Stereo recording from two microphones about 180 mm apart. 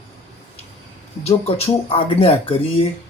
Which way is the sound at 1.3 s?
35° left (ahead or behind).